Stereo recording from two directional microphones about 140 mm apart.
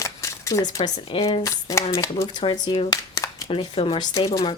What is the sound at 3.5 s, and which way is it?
Speech, 40° left (ahead or behind).